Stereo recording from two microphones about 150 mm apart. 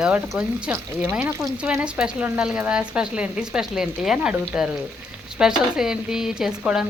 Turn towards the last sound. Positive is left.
turn(degrees=-5)  # may be behind; listen again after turning